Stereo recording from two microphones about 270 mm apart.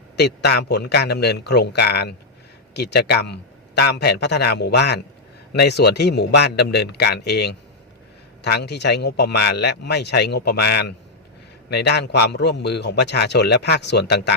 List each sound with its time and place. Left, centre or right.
0.2 s a man's voice: left